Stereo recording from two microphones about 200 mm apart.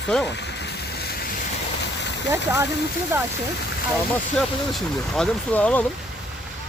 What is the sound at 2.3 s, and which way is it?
Speech, 15° right (ahead or behind).